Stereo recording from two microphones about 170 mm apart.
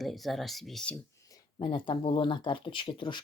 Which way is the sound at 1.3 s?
30° left (ahead or behind).